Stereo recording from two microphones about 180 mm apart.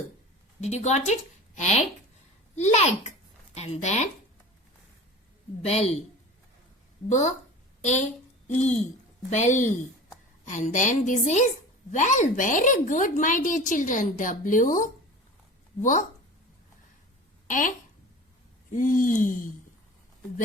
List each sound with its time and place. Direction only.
0.6 s a woman's voice: 40° left (ahead or behind)
5.6 s a woman's voice: 35° left (ahead or behind)
8.4 s a woman's voice: 40° left (ahead or behind)
17.5 s a woman's voice: 45° left (ahead or behind)